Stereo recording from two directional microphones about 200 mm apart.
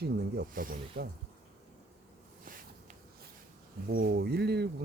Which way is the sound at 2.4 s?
45° right (ahead or behind).